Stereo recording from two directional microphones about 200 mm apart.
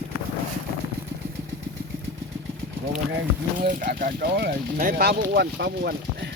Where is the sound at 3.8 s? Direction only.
50° right (ahead or behind).